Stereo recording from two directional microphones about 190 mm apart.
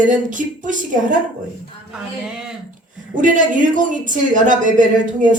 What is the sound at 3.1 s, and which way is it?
A woman's voice, 45° right (ahead or behind).